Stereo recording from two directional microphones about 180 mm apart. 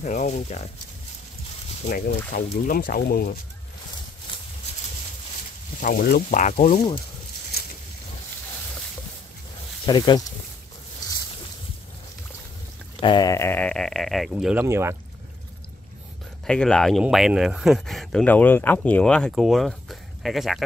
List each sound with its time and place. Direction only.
0.0 s speech: 40° left (ahead or behind)
1.9 s speech: 55° left (ahead or behind)
5.8 s speech: 50° left (ahead or behind)
6.4 s speech: 40° left (ahead or behind)
9.8 s speech: 20° left (ahead or behind)
13.0 s speech: 25° left (ahead or behind); by 15.0 s 15° right (ahead or behind)
16.4 s speech: 5° left (ahead or behind)